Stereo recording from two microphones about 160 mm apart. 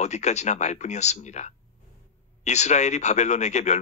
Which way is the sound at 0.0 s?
45° left (ahead or behind).